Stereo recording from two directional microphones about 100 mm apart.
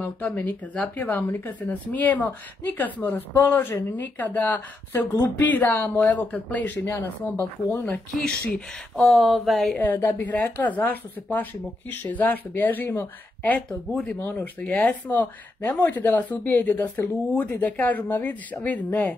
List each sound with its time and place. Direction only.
0.0 s speech: 15° left (ahead or behind)
8.1 s speech: 5° left (ahead or behind)
9.8 s speech: 20° left (ahead or behind)